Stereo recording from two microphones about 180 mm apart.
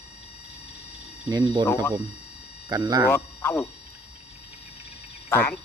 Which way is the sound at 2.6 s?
20° right (ahead or behind).